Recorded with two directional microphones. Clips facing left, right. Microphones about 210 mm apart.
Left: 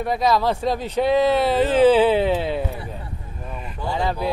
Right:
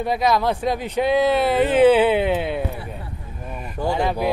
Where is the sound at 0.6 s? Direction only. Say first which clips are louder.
Even; 15° right (ahead or behind).